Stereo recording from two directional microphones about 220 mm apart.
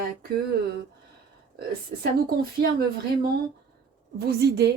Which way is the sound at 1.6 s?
45° right (ahead or behind).